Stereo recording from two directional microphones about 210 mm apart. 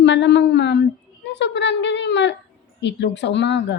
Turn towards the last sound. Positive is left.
turn(degrees=55)  # may be behind; listen again after turning